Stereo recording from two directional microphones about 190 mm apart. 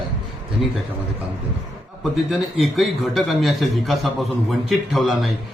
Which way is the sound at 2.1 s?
Centre (ahead or behind).